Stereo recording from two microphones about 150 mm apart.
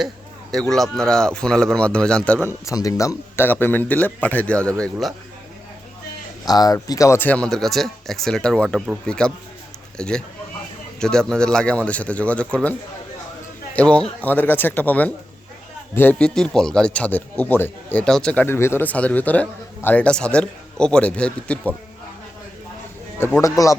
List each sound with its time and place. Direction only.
0.5 s speech: 5° left (ahead or behind)
6.4 s a man's voice: 25° left (ahead or behind); by 12.7 s 10° left (ahead or behind)
13.7 s speech: 5° left (ahead or behind)
23.2 s a man's voice: 20° left (ahead or behind)